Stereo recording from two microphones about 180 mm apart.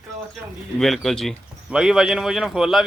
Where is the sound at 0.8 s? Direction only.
Centre (ahead or behind).